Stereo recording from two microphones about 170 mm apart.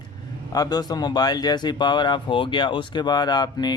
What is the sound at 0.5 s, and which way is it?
Speech, 20° left (ahead or behind).